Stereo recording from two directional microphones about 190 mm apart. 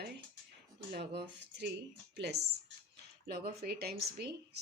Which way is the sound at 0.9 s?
60° right (ahead or behind).